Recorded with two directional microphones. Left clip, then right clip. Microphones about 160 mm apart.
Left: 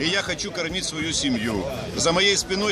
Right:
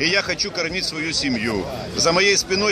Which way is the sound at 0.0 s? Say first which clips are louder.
Right 4 dB; 5° right (ahead or behind).